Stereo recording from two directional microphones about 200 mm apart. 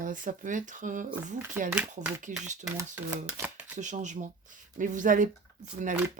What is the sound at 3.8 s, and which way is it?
Speech, 40° right (ahead or behind).